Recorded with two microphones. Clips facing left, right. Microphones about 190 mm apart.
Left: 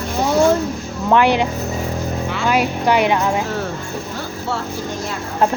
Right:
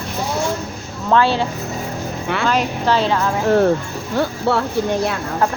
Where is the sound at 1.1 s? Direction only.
15° left (ahead or behind).